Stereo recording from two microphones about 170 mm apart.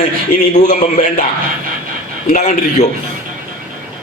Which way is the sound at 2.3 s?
45° left (ahead or behind).